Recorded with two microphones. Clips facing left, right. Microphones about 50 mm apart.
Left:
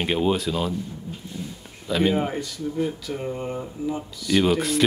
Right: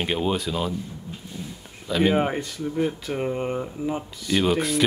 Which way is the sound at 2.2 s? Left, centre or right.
Right.